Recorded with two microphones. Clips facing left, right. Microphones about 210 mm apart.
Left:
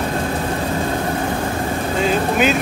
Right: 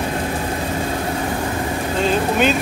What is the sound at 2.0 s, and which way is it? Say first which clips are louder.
Speech: even; 5° left (ahead or behind).